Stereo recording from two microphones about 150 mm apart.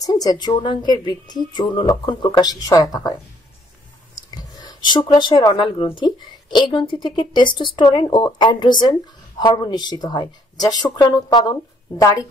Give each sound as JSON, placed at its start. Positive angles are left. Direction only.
{"t": 0.0, "sound": "speech", "side_deg": 25}
{"t": 4.4, "sound": "speech", "side_deg": 25}